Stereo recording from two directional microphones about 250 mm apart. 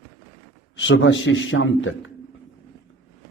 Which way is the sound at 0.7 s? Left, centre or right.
Left.